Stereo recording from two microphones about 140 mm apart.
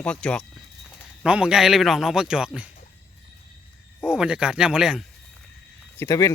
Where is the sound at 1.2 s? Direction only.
5° right (ahead or behind).